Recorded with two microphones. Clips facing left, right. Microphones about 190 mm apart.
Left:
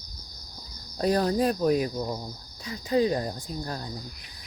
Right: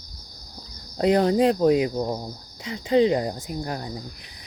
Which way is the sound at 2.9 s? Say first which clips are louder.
Right 5 dB; 20° right (ahead or behind).